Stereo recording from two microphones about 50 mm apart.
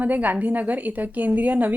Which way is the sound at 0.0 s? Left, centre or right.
Right.